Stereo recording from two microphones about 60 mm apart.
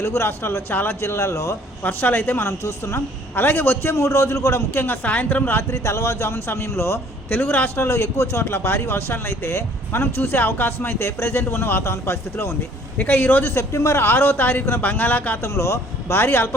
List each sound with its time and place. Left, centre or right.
0.0 s speech: left
1.0 s speech: left
1.8 s speech: left
2.5 s speech: left
3.3 s speech: left
3.9 s speech: left
5.0 s a woman's voice: left
5.7 s speech: left
7.3 s a woman's voice: left
7.8 s speech: left
13.0 s speech: left
14.0 s a woman's voice: left
15.4 s speech: left